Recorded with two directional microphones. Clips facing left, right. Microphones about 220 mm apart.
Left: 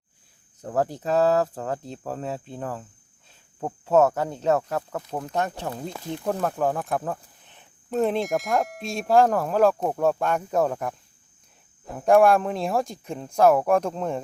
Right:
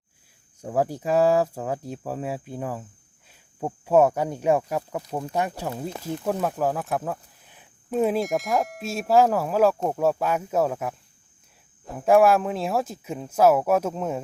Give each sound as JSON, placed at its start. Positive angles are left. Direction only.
{"t": 0.6, "sound": "speech", "side_deg": -10}